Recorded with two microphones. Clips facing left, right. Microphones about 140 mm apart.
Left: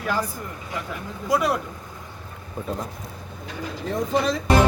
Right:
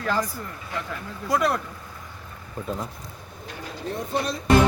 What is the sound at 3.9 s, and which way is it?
Speech, 90° left.